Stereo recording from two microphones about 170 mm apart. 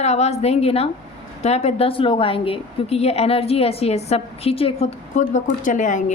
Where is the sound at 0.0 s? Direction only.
40° left (ahead or behind).